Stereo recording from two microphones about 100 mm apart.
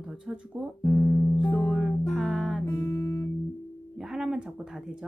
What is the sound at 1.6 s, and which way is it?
Music, 15° left (ahead or behind).